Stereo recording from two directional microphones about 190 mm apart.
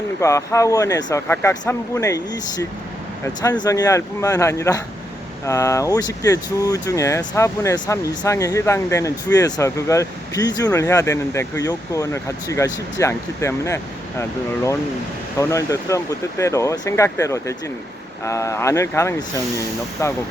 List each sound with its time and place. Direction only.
0.2 s speech: 15° left (ahead or behind)